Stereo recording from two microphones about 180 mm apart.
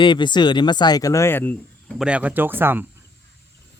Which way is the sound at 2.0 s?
5° right (ahead or behind).